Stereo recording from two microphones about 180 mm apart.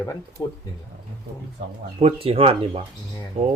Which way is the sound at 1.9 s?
30° right (ahead or behind).